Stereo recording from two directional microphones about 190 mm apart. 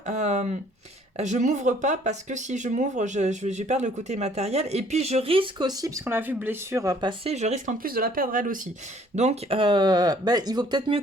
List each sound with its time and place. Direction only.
0.0 s speech: 35° right (ahead or behind)
7.3 s speech: 35° right (ahead or behind)
9.1 s speech: 35° right (ahead or behind)